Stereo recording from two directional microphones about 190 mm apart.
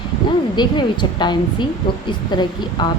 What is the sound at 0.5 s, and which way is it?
A woman's voice, 25° left (ahead or behind).